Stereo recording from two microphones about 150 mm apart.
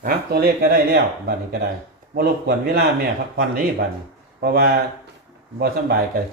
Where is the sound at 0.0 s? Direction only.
90° right.